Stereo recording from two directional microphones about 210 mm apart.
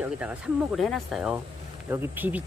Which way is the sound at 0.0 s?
5° right (ahead or behind).